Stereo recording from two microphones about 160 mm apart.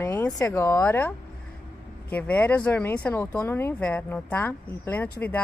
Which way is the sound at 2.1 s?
10° left (ahead or behind).